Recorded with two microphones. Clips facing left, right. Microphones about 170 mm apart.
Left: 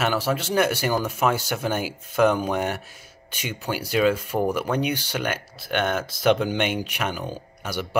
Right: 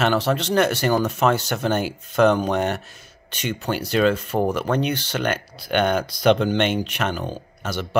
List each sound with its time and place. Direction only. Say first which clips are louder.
0.0 s speech: right 3 dB; 5° left (ahead or behind)